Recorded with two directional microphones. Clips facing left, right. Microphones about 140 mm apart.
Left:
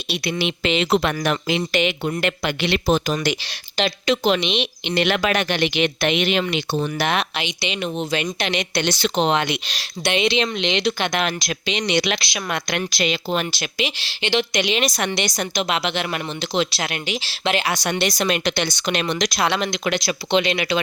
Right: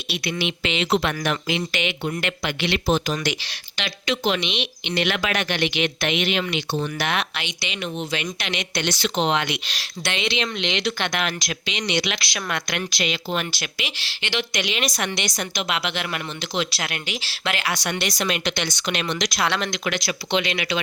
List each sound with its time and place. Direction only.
0.1 s speech: 35° left (ahead or behind)
7.8 s speech: 35° left (ahead or behind)
9.7 s speech: 20° left (ahead or behind)
11.2 s speech: 30° left (ahead or behind)
11.9 s speech: 45° left (ahead or behind)
12.2 s speech: 20° left (ahead or behind)
12.7 s speech: 35° left (ahead or behind)
18.2 s speech: 40° left (ahead or behind)
19.5 s speech: 15° left (ahead or behind)
19.8 s speech: 30° left (ahead or behind)